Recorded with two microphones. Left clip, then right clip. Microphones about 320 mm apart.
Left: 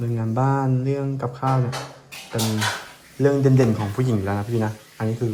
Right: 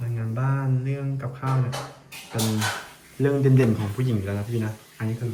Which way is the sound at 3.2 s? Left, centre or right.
Centre.